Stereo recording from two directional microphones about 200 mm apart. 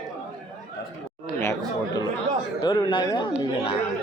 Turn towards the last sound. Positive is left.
turn(degrees=20)  # may be behind; listen again after turning